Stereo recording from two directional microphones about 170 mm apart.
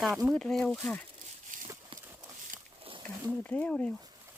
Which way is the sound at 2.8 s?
30° right (ahead or behind).